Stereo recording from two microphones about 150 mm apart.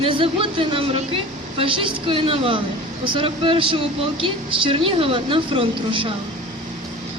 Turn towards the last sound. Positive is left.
turn(degrees=-35)  # may be behind; listen again after turning